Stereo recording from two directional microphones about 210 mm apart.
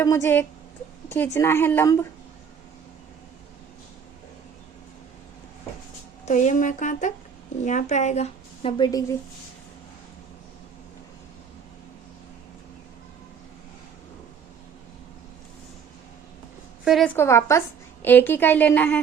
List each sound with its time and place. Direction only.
0.0 s a woman's voice: 15° left (ahead or behind)
6.2 s a woman's voice: 35° left (ahead or behind); by 9.1 s 20° left (ahead or behind)
16.8 s a woman's voice: centre (ahead or behind)
17.2 s a woman's voice: 10° left (ahead or behind)